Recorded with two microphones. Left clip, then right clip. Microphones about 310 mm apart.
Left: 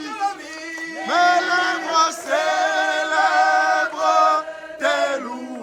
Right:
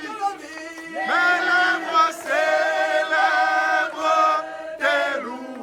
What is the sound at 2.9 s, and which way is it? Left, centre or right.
Chant, centre.